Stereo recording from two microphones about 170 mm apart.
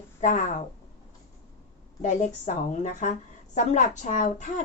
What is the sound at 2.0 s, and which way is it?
A woman's voice, 45° left (ahead or behind).